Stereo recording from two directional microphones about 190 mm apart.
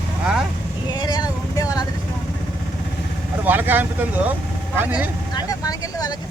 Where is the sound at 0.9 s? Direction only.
20° left (ahead or behind).